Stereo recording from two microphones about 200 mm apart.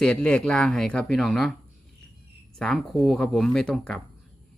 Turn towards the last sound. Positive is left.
turn(degrees=5)  # may be behind; listen again after turning